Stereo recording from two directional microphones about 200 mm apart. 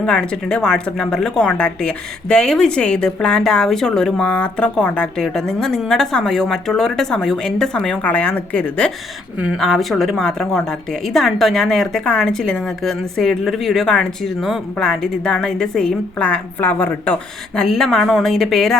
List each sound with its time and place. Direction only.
0.0 s a woman's voice: 5° left (ahead or behind)